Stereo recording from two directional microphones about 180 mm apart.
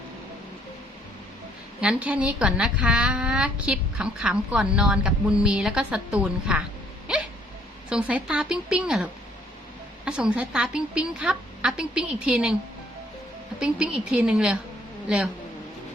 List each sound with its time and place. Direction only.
1.8 s a woman's voice: 5° right (ahead or behind)
7.1 s dog: 5° right (ahead or behind)
7.9 s a woman's voice: 5° right (ahead or behind)
10.1 s a woman's voice: 5° right (ahead or behind)
13.6 s a woman's voice: 5° right (ahead or behind)